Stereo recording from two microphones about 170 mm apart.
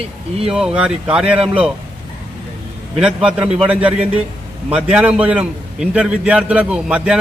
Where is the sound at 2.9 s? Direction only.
5° right (ahead or behind).